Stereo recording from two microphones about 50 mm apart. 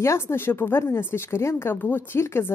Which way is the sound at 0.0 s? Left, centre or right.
Left.